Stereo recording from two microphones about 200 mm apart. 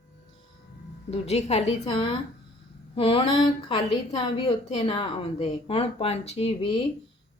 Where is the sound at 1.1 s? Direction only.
30° left (ahead or behind).